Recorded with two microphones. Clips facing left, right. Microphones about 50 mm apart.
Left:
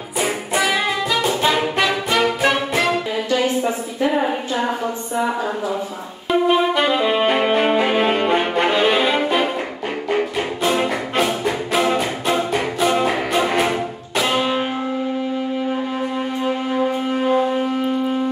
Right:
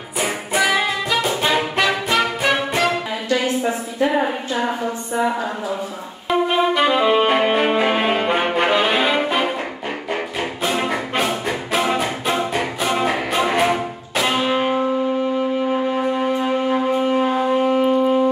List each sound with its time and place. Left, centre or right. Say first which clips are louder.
0.2 s music: even; centre
6.2 s saxophone: left 1 dB; centre
10.0 s music: left 5 dB; centre
15.7 s wind instrument: right 3 dB; centre
17.6 s shofar: right 4 dB; centre